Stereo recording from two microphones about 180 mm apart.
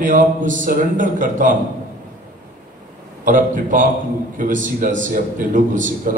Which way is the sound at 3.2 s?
50° right (ahead or behind).